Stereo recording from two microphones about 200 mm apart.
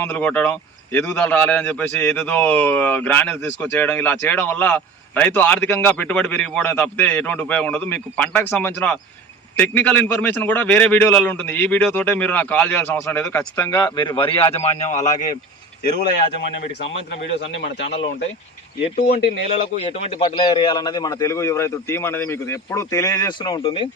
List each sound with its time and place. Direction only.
0.0 s speech: 5° left (ahead or behind)
13.7 s speech: 20° left (ahead or behind); by 15.3 s 40° left (ahead or behind)
15.8 s speech: 50° left (ahead or behind)
17.4 s speech: 65° left (ahead or behind)
18.9 s speech: 50° left (ahead or behind)
19.5 s speech: 30° left (ahead or behind)